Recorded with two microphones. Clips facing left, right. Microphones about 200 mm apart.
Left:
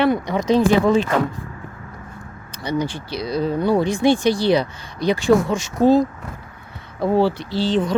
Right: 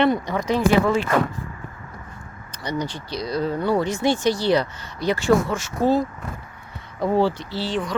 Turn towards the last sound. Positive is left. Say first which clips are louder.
# left 6 dB
turn(degrees=25)  # may be behind; listen again after turning